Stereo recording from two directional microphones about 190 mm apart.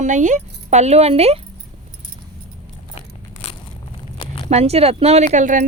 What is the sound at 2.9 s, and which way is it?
Crunch, 30° left (ahead or behind).